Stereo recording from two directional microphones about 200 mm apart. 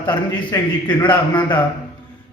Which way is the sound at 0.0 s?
20° left (ahead or behind).